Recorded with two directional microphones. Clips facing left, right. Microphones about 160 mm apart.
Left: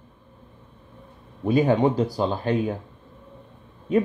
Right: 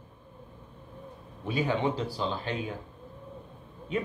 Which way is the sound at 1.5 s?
45° left (ahead or behind).